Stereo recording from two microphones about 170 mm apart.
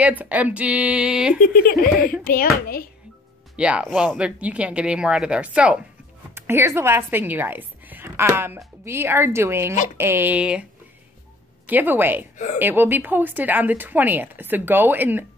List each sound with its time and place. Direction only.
0.0 s a woman's voice: 10° right (ahead or behind)
1.4 s speech: 60° left (ahead or behind)
3.5 s a woman's voice: 5° right (ahead or behind)